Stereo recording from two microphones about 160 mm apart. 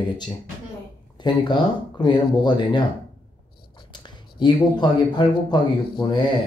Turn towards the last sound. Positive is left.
turn(degrees=30)  # may be behind; listen again after turning